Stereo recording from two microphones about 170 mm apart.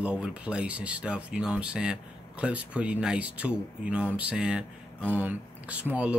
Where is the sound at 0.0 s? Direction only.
5° right (ahead or behind).